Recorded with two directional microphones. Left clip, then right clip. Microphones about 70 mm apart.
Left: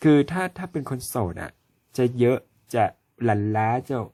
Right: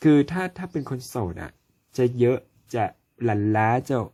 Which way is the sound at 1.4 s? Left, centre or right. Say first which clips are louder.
Left 3 dB; left.